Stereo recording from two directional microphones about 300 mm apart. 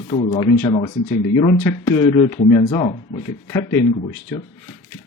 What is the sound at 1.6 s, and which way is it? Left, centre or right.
Speech, centre.